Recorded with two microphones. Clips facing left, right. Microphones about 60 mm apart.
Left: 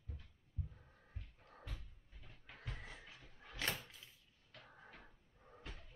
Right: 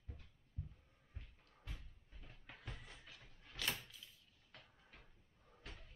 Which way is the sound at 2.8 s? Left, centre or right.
Left.